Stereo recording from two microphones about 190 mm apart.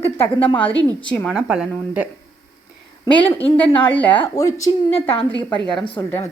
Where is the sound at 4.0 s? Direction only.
10° left (ahead or behind).